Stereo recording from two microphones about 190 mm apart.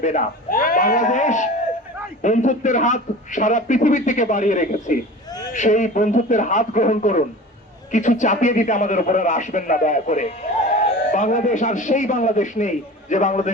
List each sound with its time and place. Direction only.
0.0 s a man's voice: 45° left (ahead or behind)